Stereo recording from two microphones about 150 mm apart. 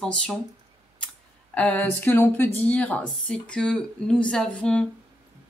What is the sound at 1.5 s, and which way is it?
Speech, 10° left (ahead or behind).